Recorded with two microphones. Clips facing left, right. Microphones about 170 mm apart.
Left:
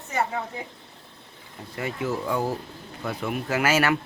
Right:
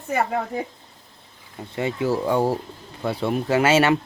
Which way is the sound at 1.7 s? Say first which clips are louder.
Right 5 dB; 25° right (ahead or behind).